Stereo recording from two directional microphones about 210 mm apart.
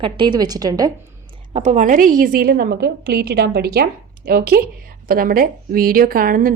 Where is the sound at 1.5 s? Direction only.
35° right (ahead or behind).